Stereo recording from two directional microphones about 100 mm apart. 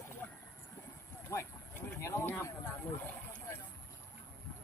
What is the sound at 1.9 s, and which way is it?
Speech, 30° left (ahead or behind).